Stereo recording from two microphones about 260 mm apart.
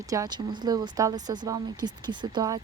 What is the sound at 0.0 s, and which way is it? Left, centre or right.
Speech, centre.